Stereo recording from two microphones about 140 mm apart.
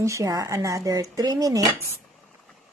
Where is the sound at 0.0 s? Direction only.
20° right (ahead or behind).